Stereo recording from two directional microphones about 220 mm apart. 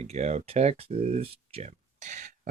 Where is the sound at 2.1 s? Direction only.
35° right (ahead or behind).